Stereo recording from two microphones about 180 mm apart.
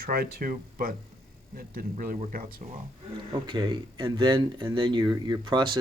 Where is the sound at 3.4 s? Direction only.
25° right (ahead or behind).